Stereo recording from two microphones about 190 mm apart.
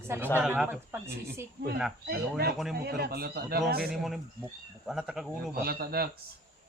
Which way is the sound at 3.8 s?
Centre (ahead or behind).